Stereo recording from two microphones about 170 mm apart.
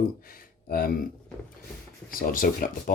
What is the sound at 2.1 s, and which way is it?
Speech, 55° left (ahead or behind).